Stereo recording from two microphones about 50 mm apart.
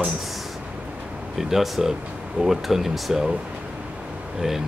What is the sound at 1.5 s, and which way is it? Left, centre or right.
Speech, centre.